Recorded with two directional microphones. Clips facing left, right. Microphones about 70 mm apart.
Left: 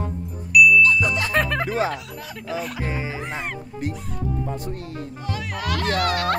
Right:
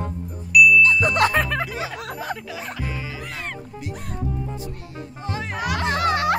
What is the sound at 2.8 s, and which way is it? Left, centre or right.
Speech, left.